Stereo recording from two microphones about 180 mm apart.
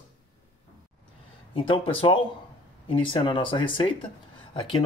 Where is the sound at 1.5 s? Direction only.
30° left (ahead or behind).